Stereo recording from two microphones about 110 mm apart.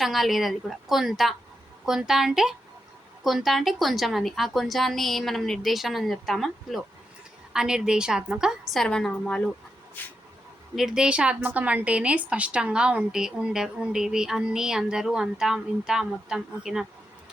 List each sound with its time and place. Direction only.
0.0 s a woman's voice: centre (ahead or behind)
8.7 s a woman's voice: 5° left (ahead or behind)
10.8 s a woman's voice: 5° right (ahead or behind)